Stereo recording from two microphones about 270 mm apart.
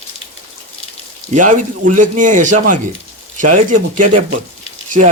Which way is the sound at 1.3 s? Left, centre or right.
Right.